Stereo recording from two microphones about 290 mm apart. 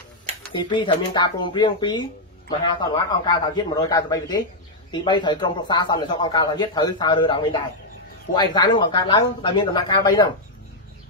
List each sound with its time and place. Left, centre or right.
0.5 s a man's voice: centre